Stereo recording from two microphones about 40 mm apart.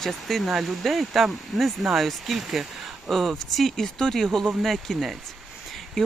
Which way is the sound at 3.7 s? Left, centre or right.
Centre.